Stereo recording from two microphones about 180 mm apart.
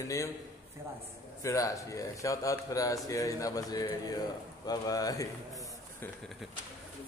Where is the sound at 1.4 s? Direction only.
20° left (ahead or behind).